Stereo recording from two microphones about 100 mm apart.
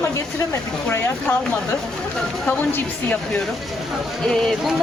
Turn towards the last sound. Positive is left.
turn(degrees=5)  # may be behind; listen again after turning